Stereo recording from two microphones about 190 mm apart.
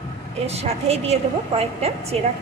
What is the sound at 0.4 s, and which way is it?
A woman's voice, 35° right (ahead or behind).